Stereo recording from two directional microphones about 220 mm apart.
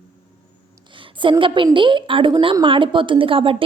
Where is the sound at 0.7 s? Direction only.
20° right (ahead or behind).